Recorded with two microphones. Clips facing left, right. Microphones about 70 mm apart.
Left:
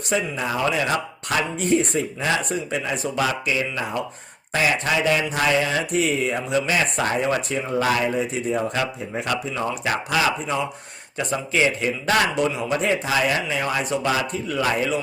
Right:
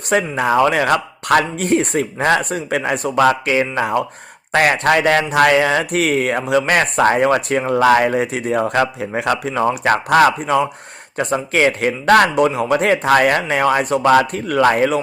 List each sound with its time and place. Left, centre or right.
0.1 s speech: right
9.5 s speech: right